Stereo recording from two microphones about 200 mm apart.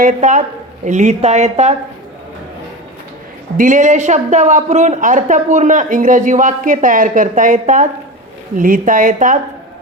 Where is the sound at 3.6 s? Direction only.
40° right (ahead or behind).